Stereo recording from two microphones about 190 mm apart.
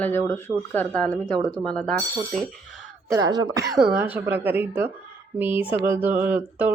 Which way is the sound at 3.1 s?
20° right (ahead or behind).